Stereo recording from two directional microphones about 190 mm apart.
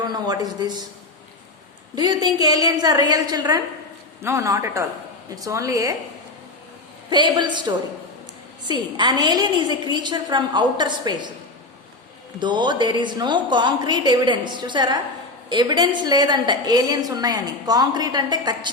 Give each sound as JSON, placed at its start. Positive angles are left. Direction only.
{"t": 0.0, "sound": "a woman's voice", "side_deg": -20}
{"t": 2.0, "sound": "a woman's voice", "side_deg": -20}
{"t": 7.1, "sound": "a woman's voice", "side_deg": -25}
{"t": 12.4, "sound": "a woman's voice", "side_deg": -25}